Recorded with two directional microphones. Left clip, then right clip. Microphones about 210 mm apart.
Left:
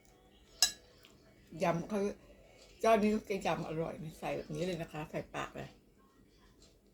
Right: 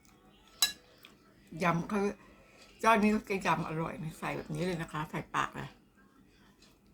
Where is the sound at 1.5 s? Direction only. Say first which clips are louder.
Right 2 dB; 45° right (ahead or behind).